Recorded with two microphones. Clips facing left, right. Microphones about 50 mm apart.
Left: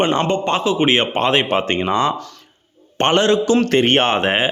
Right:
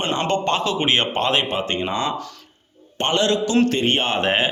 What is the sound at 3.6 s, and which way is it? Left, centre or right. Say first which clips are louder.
Speech: left 5 dB; left.